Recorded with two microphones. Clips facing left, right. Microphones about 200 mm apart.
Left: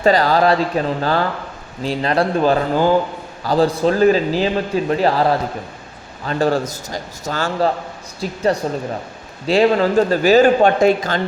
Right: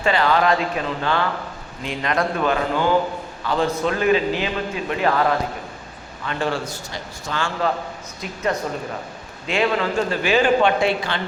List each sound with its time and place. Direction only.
0.0 s a man's voice: 40° left (ahead or behind)